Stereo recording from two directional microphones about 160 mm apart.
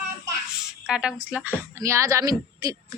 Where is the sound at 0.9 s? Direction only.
5° right (ahead or behind); by 2.7 s 20° right (ahead or behind).